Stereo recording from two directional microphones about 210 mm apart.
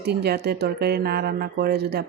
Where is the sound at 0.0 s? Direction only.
50° right (ahead or behind).